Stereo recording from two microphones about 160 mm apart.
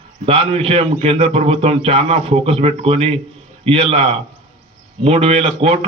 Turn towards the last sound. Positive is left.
turn(degrees=-40)  # may be behind; listen again after turning